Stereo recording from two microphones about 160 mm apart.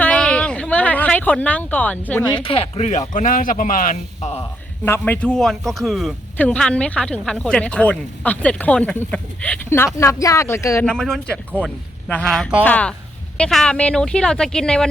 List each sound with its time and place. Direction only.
0.0 s a sound: 5° left (ahead or behind)
2.4 s speech: 35° left (ahead or behind)
3.1 s a man's voice: 55° left (ahead or behind)
4.9 s speech: 10° left (ahead or behind)
10.8 s speech: 5° left (ahead or behind)